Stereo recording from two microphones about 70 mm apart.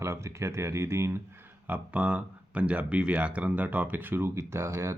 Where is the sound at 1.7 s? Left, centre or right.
Centre; by 4.9 s right.